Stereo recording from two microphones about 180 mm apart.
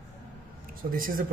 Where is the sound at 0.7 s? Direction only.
50° right (ahead or behind).